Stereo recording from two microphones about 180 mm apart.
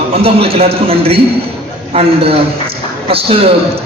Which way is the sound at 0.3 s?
30° right (ahead or behind).